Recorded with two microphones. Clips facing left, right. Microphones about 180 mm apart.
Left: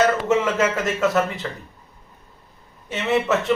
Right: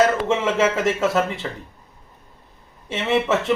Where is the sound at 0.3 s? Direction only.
25° right (ahead or behind).